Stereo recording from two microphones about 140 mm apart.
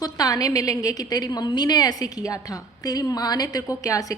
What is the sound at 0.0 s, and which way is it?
A woman's voice, 25° left (ahead or behind).